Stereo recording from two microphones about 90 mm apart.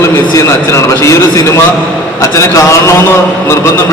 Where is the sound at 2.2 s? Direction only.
35° left (ahead or behind).